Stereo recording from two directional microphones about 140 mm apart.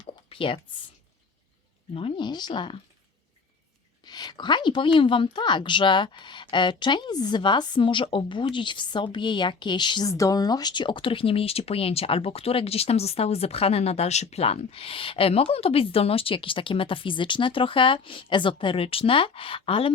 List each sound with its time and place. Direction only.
0.3 s speech: 40° left (ahead or behind)
2.0 s speech: 40° left (ahead or behind)
4.0 s speech: 30° left (ahead or behind)